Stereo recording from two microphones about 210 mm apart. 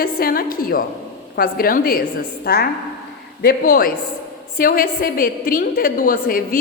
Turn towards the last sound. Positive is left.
turn(degrees=45)  # may be behind; listen again after turning